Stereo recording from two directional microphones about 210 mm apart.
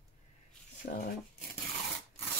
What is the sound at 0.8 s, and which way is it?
Speech, 40° left (ahead or behind).